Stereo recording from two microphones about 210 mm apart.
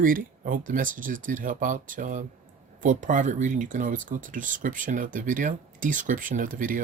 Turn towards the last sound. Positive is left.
turn(degrees=-40)  # may be behind; listen again after turning